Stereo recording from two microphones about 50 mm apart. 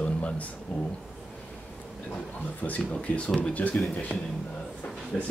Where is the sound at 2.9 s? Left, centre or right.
Left.